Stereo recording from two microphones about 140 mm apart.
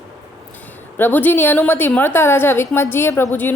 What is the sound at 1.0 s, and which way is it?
A woman's voice, 15° left (ahead or behind).